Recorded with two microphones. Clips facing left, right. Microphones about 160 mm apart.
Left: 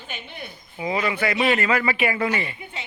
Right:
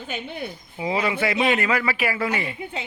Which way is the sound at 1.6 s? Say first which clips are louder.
Left 1 dB; 10° right (ahead or behind).